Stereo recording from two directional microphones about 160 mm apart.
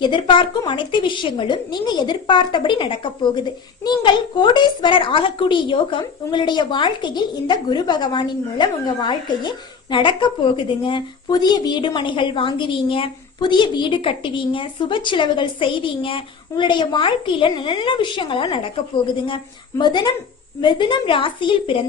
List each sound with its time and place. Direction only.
0.0 s a woman's voice: 30° left (ahead or behind)
19.8 s a woman's voice: 30° left (ahead or behind)